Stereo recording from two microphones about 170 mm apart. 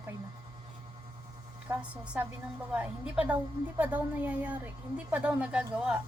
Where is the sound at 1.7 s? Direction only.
15° right (ahead or behind).